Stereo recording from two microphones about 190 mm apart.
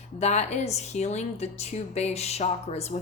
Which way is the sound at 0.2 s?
35° left (ahead or behind).